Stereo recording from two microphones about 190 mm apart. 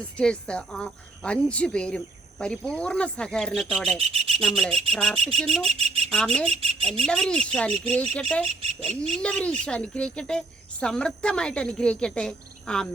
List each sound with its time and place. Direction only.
0.2 s speech: 5° left (ahead or behind)
3.9 s rub: 35° right (ahead or behind)
4.4 s speech: 5° left (ahead or behind)
5.6 s speech: 30° right (ahead or behind)
6.1 s speech: 5° left (ahead or behind)
6.5 s rub: 30° right (ahead or behind)
7.0 s speech: 5° left (ahead or behind)
8.9 s rub: 35° right (ahead or behind)
9.2 s speech: 5° left (ahead or behind)